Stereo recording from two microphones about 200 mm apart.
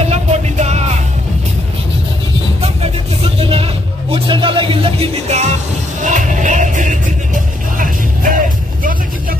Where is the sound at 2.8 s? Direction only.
30° right (ahead or behind).